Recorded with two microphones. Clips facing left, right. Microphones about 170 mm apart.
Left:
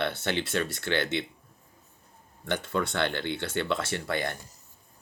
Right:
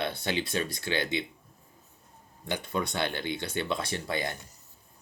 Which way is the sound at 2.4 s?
15° right (ahead or behind).